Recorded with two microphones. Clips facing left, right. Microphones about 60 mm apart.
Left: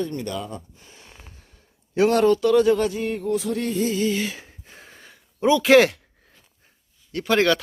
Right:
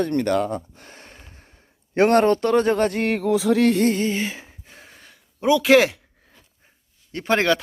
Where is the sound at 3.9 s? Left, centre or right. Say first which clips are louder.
Even; right.